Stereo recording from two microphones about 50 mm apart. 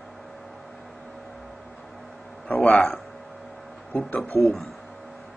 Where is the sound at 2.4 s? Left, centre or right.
Left.